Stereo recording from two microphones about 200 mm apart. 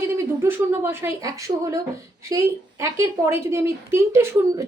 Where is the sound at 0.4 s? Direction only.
10° right (ahead or behind).